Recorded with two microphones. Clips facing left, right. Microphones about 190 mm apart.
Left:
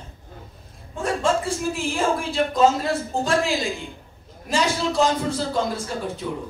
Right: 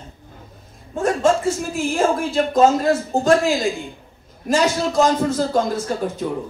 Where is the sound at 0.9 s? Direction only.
45° right (ahead or behind).